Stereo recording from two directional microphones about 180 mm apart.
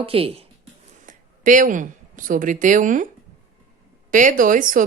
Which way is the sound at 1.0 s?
45° right (ahead or behind).